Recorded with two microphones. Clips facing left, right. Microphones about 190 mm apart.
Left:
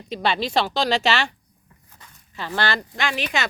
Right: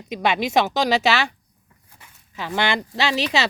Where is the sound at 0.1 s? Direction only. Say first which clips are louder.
Right 2 dB; 15° right (ahead or behind).